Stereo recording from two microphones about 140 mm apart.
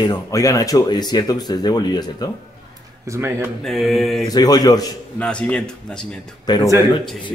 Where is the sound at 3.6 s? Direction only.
Centre (ahead or behind).